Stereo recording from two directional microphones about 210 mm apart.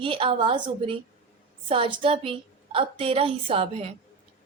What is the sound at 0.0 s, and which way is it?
Speech, 25° right (ahead or behind).